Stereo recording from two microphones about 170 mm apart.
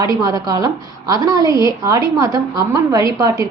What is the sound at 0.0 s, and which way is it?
A woman's voice, 20° right (ahead or behind).